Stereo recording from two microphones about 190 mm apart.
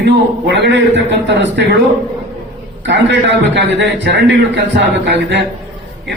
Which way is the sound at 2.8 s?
65° right (ahead or behind).